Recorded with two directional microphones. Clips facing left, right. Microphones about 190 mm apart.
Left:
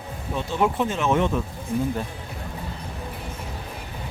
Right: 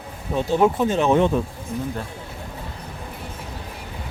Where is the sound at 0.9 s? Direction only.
35° right (ahead or behind).